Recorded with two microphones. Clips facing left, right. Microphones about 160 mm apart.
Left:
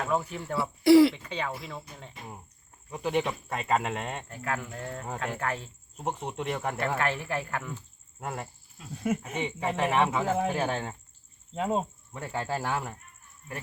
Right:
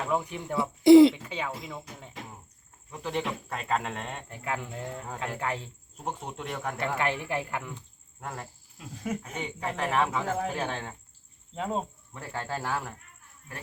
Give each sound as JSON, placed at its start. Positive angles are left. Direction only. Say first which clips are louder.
{"t": 0.0, "sound": "speech", "louder": "even", "side_deg": -15}
{"t": 1.1, "sound": "speech", "louder": "left 1 dB", "side_deg": -5}
{"t": 2.2, "sound": "cricket", "louder": "right 2 dB", "side_deg": -90}
{"t": 2.9, "sound": "speech", "louder": "left 3 dB", "side_deg": 10}
{"t": 4.3, "sound": "speech", "louder": "even", "side_deg": -15}
{"t": 6.1, "sound": "speech", "louder": "left 3 dB", "side_deg": 5}
{"t": 6.7, "sound": "speech", "louder": "even", "side_deg": -15}
{"t": 8.2, "sound": "speech", "louder": "left 3 dB", "side_deg": 10}